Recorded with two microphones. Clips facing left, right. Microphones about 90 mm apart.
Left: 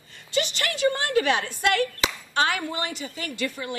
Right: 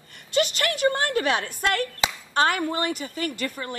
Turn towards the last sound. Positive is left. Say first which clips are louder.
# right 1 dB
turn(degrees=-45)  # may be behind; listen again after turning